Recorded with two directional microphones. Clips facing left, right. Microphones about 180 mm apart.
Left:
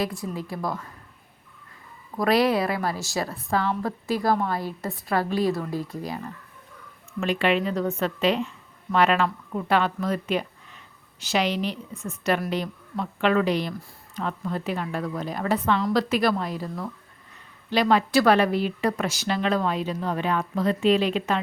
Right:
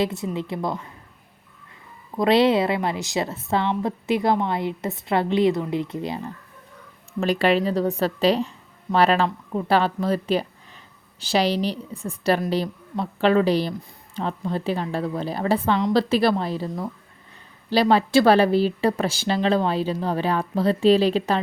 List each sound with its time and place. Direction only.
0.0 s a woman's voice: 25° right (ahead or behind)
2.1 s a woman's voice: 25° right (ahead or behind)
7.2 s a woman's voice: 35° right (ahead or behind)